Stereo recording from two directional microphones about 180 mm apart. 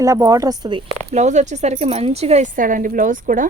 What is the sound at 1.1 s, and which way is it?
Speech, 40° right (ahead or behind).